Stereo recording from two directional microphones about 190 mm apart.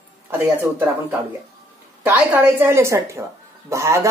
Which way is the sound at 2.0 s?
10° right (ahead or behind).